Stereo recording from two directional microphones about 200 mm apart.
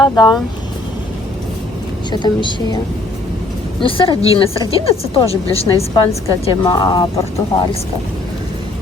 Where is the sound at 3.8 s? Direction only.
25° left (ahead or behind).